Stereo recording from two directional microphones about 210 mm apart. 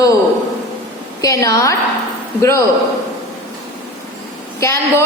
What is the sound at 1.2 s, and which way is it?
A woman's voice, 15° left (ahead or behind).